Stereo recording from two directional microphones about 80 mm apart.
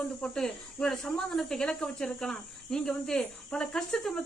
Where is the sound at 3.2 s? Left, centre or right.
Centre.